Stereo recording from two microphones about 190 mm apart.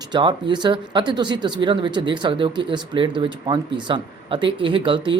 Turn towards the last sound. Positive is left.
turn(degrees=-25)  # may be behind; listen again after turning